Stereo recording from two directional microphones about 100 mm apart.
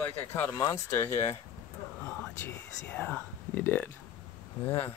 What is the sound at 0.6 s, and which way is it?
Speech, 30° left (ahead or behind).